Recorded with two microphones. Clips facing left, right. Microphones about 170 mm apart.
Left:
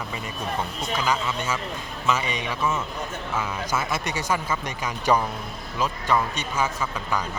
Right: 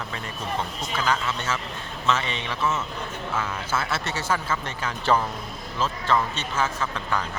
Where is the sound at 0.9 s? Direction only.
10° left (ahead or behind).